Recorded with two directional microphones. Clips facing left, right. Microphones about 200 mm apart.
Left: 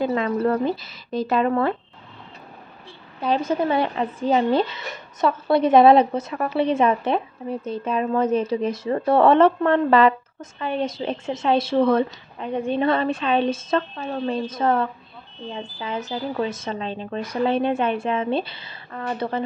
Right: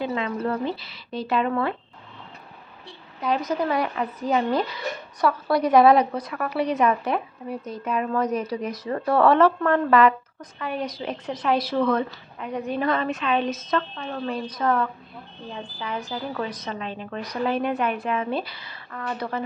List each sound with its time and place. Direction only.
0.0 s speech: 45° left (ahead or behind)
3.2 s speech: 30° left (ahead or behind)